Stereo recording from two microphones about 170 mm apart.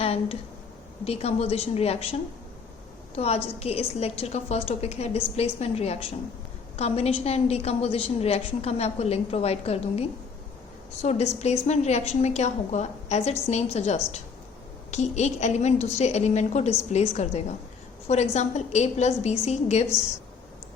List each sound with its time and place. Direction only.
0.0 s a woman's voice: 35° left (ahead or behind)
3.2 s a woman's voice: 35° left (ahead or behind)